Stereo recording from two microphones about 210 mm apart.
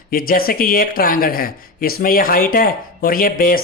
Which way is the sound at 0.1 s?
45° left (ahead or behind).